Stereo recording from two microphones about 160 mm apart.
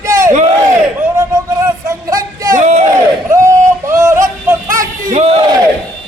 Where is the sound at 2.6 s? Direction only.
45° right (ahead or behind).